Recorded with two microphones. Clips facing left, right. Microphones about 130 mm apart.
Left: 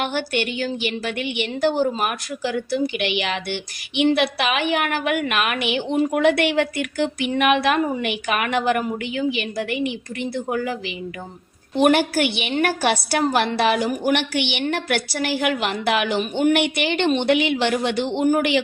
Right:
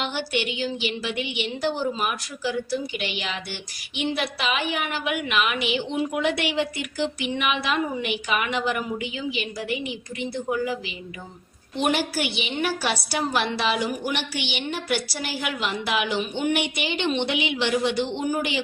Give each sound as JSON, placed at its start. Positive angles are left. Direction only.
{"t": 0.0, "sound": "a woman's voice", "side_deg": 55}